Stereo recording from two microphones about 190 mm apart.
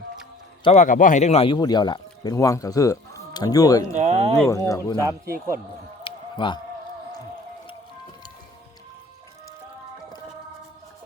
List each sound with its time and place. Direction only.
0.6 s speech: 35° left (ahead or behind); by 3.8 s 20° left (ahead or behind)
4.0 s speech: 35° right (ahead or behind)
4.4 s speech: 15° left (ahead or behind)
6.0 s a sound: 25° left (ahead or behind)